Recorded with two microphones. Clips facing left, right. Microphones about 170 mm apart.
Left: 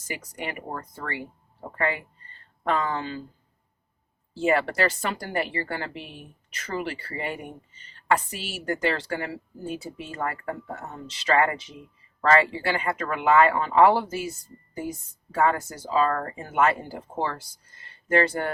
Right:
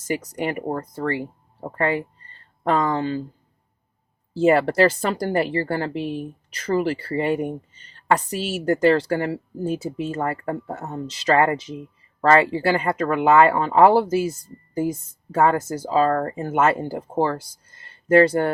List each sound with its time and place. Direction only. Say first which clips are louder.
0.1 s a woman's voice: right 9 dB; 40° right (ahead or behind)
4.4 s a woman's voice: right 7 dB; 40° right (ahead or behind)
10.2 s speech: right 1 dB; 30° right (ahead or behind)
10.7 s a woman's voice: right 7 dB; 45° right (ahead or behind)
15.4 s a woman's voice: right 5 dB; 40° right (ahead or behind)